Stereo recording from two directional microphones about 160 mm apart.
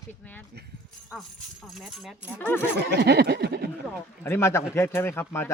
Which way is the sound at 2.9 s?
90° right.